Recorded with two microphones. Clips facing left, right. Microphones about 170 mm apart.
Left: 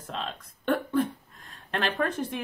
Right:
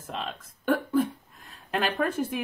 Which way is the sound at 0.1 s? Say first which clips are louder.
Even; centre (ahead or behind).